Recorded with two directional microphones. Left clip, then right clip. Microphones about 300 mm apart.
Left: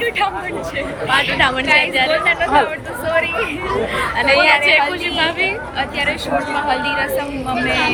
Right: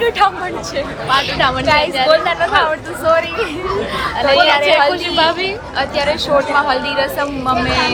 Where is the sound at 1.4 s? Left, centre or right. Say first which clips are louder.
Right 1 dB; centre.